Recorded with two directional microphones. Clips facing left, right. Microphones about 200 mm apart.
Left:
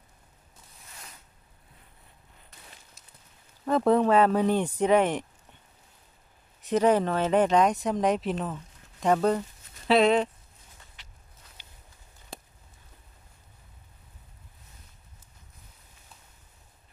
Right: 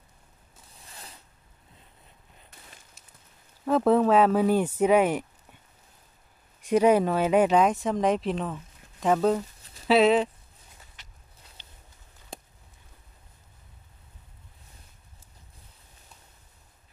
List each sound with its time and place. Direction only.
3.6 s speech: 5° right (ahead or behind)
6.6 s speech: 10° right (ahead or behind)
11.0 s a sound: 45° right (ahead or behind)